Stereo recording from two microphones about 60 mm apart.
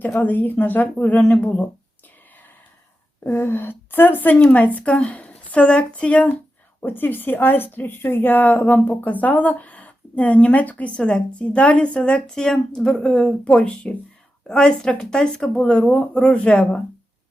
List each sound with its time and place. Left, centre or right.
0.2 s speech: left
1.2 s speech: centre
3.2 s speech: left
6.8 s speech: left; by 16.8 s centre